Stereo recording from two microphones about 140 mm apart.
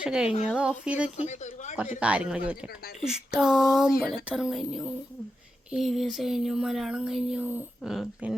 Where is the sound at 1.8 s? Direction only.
10° right (ahead or behind).